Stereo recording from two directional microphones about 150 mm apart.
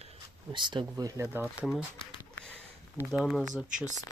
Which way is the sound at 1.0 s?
15° right (ahead or behind).